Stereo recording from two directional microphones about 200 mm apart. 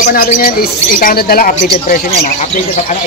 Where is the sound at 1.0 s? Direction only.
45° left (ahead or behind).